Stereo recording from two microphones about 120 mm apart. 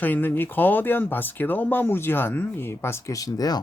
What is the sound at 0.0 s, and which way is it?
Speech, 15° left (ahead or behind).